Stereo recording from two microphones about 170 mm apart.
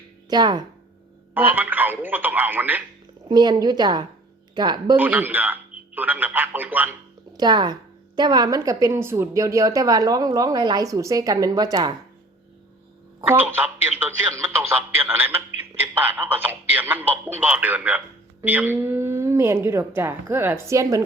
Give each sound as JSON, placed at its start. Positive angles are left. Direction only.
{"t": 0.3, "sound": "a woman's voice", "side_deg": -25}
{"t": 1.3, "sound": "speech", "side_deg": -10}
{"t": 3.2, "sound": "a woman's voice", "side_deg": -25}
{"t": 4.9, "sound": "speech", "side_deg": -10}
{"t": 7.3, "sound": "a woman's voice", "side_deg": -25}
{"t": 13.2, "sound": "speech", "side_deg": -15}